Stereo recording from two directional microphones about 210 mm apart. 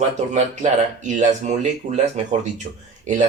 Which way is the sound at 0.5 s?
35° right (ahead or behind).